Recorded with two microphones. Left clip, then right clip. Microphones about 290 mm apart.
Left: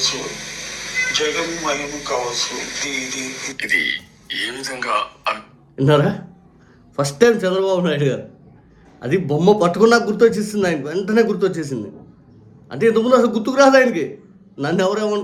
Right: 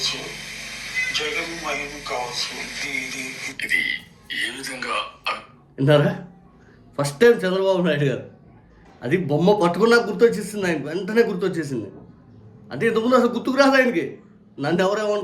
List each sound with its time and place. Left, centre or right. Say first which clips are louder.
0.0 s speech: left 5 dB; centre
7.4 s a man's voice: left 2 dB; centre